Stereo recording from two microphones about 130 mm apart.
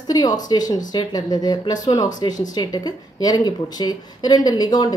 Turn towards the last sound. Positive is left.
turn(degrees=30)  # may be behind; listen again after turning